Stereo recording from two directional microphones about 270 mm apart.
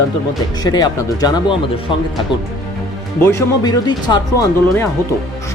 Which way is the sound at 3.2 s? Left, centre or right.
Centre.